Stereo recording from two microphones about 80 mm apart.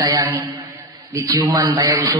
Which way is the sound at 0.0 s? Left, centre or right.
Right.